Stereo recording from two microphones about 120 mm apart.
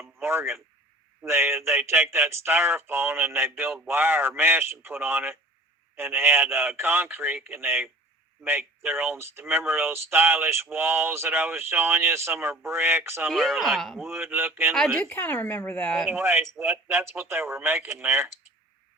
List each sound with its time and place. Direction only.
0.0 s radio: 20° right (ahead or behind)
1.2 s a man's voice: 20° right (ahead or behind)
13.3 s speech: centre (ahead or behind)
14.1 s a man's voice: 20° right (ahead or behind)
14.9 s a woman's voice: 10° left (ahead or behind)
16.0 s speech: 20° right (ahead or behind)